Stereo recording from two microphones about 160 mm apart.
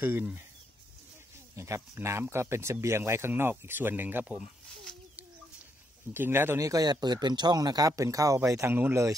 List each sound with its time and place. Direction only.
0.0 s speech: 10° right (ahead or behind)
1.6 s speech: 15° right (ahead or behind)
6.1 s speech: 15° right (ahead or behind)